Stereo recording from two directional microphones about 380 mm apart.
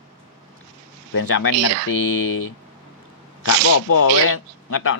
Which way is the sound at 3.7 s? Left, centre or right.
Left.